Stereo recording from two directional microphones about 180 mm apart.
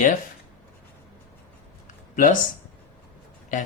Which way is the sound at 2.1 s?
45° left (ahead or behind).